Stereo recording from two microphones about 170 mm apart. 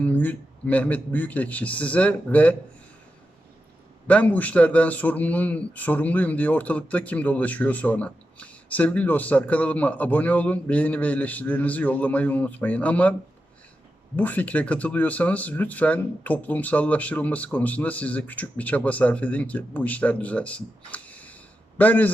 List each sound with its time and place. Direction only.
0.0 s a man's voice: 10° left (ahead or behind)
4.0 s a man's voice: 10° left (ahead or behind)
14.2 s a man's voice: 10° left (ahead or behind)